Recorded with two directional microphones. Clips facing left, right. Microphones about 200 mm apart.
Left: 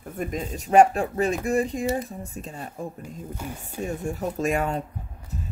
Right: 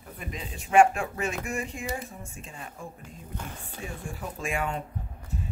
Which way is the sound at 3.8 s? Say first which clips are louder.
Left 10 dB; 40° left (ahead or behind).